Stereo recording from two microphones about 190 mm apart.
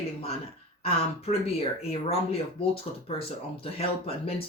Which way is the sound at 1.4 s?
30° left (ahead or behind).